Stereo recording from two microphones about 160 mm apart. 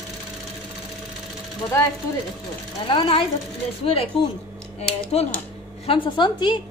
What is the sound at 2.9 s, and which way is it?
A woman's voice, 30° left (ahead or behind).